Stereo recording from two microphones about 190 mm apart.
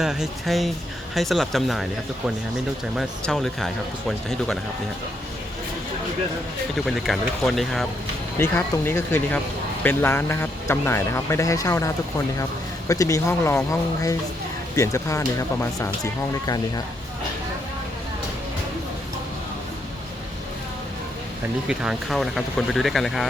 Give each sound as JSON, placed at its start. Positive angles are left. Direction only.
{"t": 0.0, "sound": "speech", "side_deg": 0}
{"t": 6.7, "sound": "speech", "side_deg": 0}
{"t": 8.4, "sound": "a man's voice", "side_deg": 15}
{"t": 12.9, "sound": "a man's voice", "side_deg": 15}
{"t": 21.7, "sound": "speech", "side_deg": -5}